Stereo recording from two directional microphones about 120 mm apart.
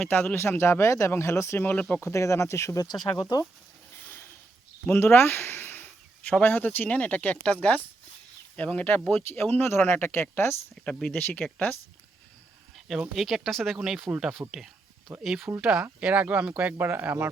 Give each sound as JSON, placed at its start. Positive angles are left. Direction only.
{"t": 0.0, "sound": "speech", "side_deg": 15}
{"t": 4.0, "sound": "a sound", "side_deg": 15}
{"t": 4.9, "sound": "speech", "side_deg": 20}
{"t": 12.7, "sound": "speech", "side_deg": 0}